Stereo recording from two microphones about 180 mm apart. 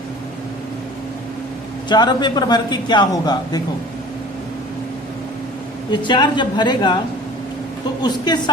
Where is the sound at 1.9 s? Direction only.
25° left (ahead or behind).